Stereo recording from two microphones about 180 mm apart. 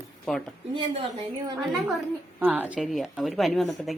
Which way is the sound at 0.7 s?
30° right (ahead or behind).